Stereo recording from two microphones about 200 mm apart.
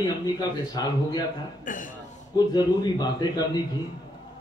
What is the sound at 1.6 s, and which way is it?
Speech, 40° left (ahead or behind).